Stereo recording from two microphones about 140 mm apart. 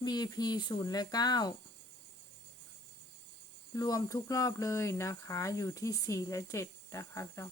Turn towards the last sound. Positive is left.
turn(degrees=20)  # may be behind; listen again after turning